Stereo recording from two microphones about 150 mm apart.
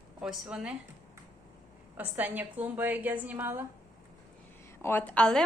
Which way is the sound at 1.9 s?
10° right (ahead or behind).